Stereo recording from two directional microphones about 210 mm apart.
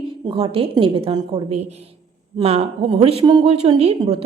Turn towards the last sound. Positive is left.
turn(degrees=-30)  # may be behind; listen again after turning